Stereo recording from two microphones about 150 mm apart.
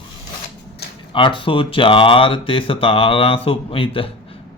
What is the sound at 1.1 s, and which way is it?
Speech, 35° left (ahead or behind).